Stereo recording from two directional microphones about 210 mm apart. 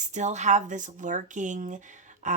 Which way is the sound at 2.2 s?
35° right (ahead or behind).